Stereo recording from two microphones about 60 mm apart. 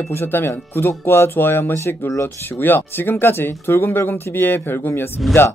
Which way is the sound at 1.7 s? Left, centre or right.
Left.